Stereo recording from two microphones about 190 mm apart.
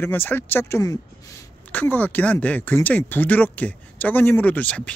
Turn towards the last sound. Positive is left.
turn(degrees=10)  # may be behind; listen again after turning